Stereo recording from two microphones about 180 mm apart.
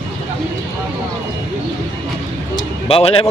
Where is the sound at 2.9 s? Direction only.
30° left (ahead or behind).